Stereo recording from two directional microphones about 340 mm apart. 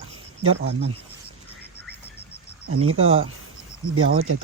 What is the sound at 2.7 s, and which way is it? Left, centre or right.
Speech, right.